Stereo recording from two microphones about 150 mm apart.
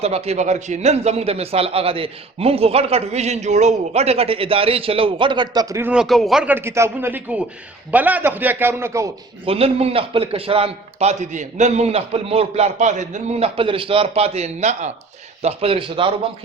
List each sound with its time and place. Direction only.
0.0 s a man's voice: 45° right (ahead or behind); by 5.9 s 20° right (ahead or behind)
5.9 s speech: centre (ahead or behind)
6.5 s a man's voice: 15° right (ahead or behind)
9.5 s a man's voice: 40° right (ahead or behind)